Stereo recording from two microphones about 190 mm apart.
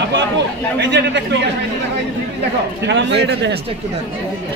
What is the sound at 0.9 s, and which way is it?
Speech, 70° right (ahead or behind).